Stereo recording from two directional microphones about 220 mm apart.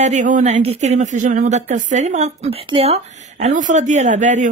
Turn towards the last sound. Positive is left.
turn(degrees=-35)  # may be behind; listen again after turning